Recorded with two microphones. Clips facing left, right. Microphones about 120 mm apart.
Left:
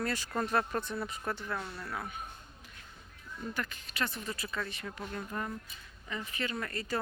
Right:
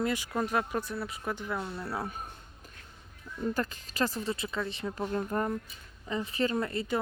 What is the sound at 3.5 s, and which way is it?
Speech, 35° right (ahead or behind).